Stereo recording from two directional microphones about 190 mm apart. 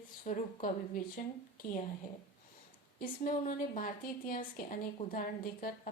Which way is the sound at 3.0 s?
45° left (ahead or behind).